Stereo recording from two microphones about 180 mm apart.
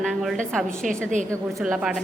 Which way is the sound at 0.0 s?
Centre (ahead or behind).